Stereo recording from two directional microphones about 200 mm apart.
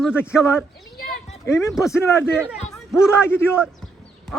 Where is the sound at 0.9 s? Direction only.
50° left (ahead or behind).